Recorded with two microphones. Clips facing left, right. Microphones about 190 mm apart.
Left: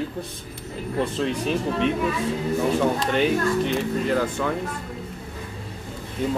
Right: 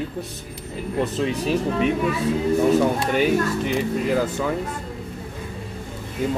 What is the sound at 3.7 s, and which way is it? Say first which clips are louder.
Speech: right 1 dB; 5° right (ahead or behind).